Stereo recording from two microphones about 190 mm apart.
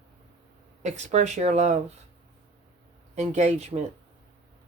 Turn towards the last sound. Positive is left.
turn(degrees=-35)  # may be behind; listen again after turning